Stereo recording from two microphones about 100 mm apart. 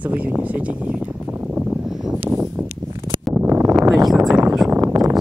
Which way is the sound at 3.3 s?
20° right (ahead or behind).